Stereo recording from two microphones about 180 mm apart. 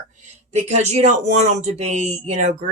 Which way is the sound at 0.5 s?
40° right (ahead or behind).